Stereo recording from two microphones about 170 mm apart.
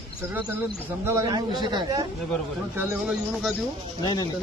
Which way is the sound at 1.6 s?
25° right (ahead or behind).